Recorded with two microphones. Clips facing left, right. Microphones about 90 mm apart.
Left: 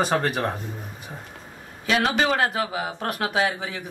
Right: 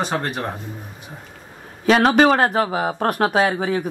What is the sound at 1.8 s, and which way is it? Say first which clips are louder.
Speech: right 8 dB; 45° right (ahead or behind).